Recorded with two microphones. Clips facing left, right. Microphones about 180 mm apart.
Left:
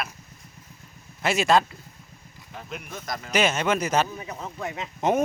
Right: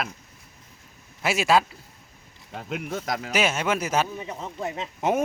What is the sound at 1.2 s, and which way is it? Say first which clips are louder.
Speech: left 1 dB; 5° right (ahead or behind).